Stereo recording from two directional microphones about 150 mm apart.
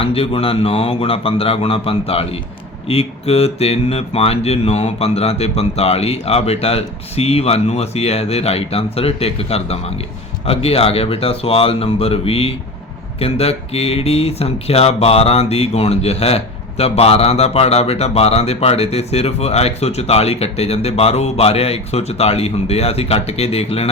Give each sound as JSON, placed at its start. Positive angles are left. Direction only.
{"t": 0.0, "sound": "speech", "side_deg": 40}